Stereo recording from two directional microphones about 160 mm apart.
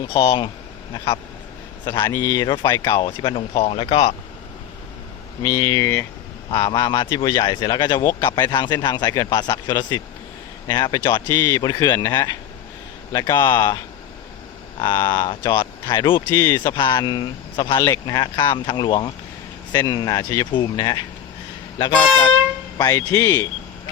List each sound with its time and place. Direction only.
1.8 s a man's voice: 30° left (ahead or behind)
2.0 s speech: 15° left (ahead or behind)
3.0 s speech: 30° left (ahead or behind)
5.4 s speech: 20° left (ahead or behind)
14.8 s speech: 25° left (ahead or behind)